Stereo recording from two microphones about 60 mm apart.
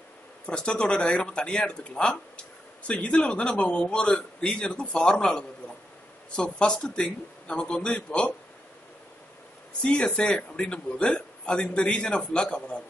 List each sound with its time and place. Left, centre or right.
0.5 s a man's voice: centre
9.8 s a man's voice: centre